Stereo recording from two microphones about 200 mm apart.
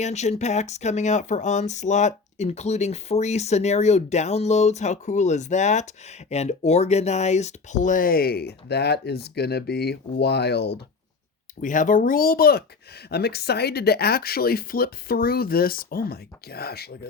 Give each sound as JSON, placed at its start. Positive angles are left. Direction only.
{"t": 0.0, "sound": "speech", "side_deg": 35}
{"t": 11.6, "sound": "speech", "side_deg": 40}